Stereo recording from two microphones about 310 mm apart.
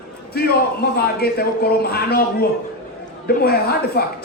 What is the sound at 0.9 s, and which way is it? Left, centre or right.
A man's voice, left.